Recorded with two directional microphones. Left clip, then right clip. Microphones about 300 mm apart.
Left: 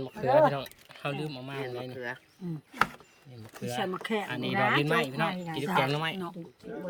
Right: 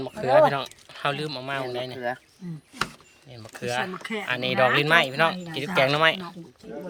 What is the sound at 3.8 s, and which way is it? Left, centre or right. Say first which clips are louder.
Speech: even; left.